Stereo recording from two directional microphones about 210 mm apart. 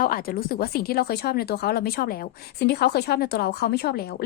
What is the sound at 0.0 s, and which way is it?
A woman's voice, 45° left (ahead or behind).